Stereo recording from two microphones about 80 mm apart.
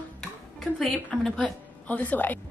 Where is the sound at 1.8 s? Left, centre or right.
Centre.